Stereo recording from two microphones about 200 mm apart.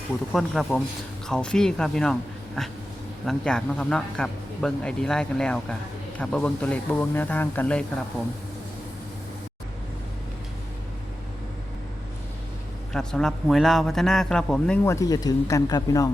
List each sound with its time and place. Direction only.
0.3 s speech: centre (ahead or behind)
12.9 s speech: 5° left (ahead or behind)
14.8 s speech: 15° left (ahead or behind)